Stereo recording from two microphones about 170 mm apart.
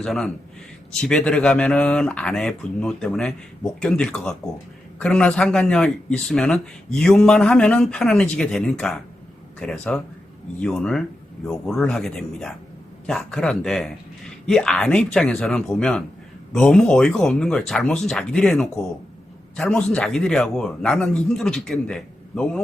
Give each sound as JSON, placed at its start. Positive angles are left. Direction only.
{"t": 0.0, "sound": "speech", "side_deg": 0}